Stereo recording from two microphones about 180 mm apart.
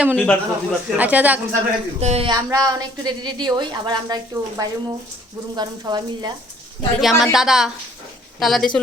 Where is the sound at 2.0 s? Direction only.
35° right (ahead or behind).